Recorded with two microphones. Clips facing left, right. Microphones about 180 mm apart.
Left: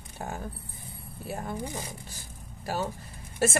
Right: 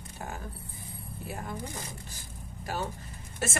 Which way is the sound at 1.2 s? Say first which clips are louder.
Left 4 dB; 30° left (ahead or behind).